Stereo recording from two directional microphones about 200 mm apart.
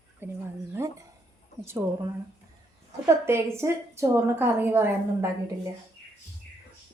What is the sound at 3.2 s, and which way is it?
A woman's voice, 15° right (ahead or behind).